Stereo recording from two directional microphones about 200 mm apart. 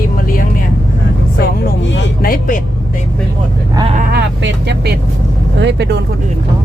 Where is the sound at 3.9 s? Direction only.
50° right (ahead or behind).